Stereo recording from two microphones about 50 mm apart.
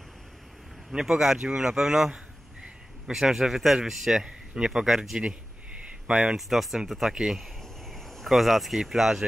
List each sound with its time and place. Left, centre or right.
0.8 s a man's voice: centre
6.0 s speech: right
6.3 s a man's voice: centre
7.9 s speech: centre